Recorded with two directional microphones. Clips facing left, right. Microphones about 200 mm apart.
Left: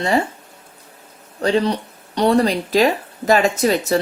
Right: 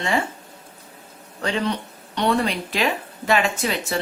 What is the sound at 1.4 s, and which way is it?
Speech, 35° left (ahead or behind).